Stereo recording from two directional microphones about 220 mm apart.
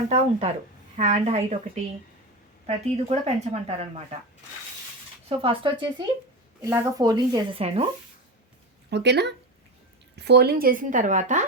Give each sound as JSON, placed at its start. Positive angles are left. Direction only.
{"t": 0.1, "sound": "speech", "side_deg": -30}
{"t": 5.3, "sound": "speech", "side_deg": -25}
{"t": 8.9, "sound": "speech", "side_deg": -50}